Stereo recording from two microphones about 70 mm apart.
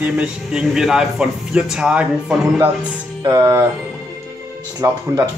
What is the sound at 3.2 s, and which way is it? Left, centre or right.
Music, right.